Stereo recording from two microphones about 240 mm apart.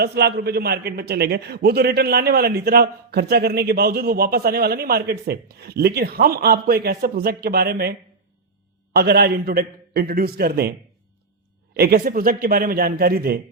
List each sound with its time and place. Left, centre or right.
0.0 s a man's voice: right